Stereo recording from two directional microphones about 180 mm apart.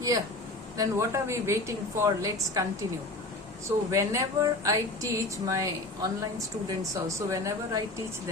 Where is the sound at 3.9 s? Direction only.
20° right (ahead or behind).